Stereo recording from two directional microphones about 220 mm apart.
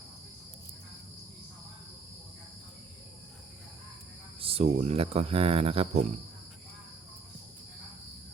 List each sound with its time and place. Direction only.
4.4 s speech: 25° right (ahead or behind)